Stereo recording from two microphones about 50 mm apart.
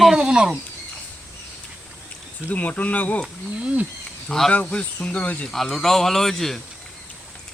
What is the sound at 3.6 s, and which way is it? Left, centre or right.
Wild animals, right.